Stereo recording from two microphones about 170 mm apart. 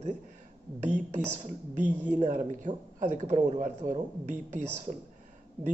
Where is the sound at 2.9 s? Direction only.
45° right (ahead or behind).